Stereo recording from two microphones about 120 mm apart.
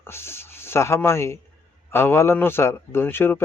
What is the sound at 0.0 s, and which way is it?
A man's voice, 20° left (ahead or behind).